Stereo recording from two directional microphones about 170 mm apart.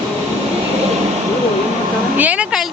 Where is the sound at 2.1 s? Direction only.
10° right (ahead or behind).